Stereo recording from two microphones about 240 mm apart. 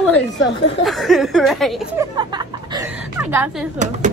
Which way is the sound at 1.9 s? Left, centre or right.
Centre.